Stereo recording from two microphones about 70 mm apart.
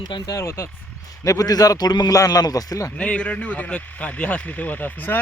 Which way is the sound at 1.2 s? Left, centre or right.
Left.